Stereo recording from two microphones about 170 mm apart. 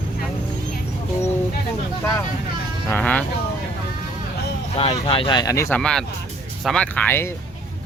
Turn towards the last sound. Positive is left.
turn(degrees=10)  # may be behind; listen again after turning